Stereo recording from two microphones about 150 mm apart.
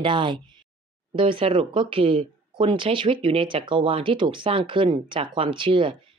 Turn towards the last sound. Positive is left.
turn(degrees=-35)  # may be behind; listen again after turning